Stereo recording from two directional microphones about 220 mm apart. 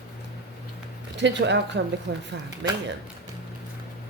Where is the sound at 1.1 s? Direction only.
55° right (ahead or behind).